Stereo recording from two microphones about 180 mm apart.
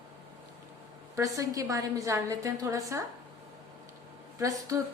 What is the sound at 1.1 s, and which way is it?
A woman's voice, 20° right (ahead or behind).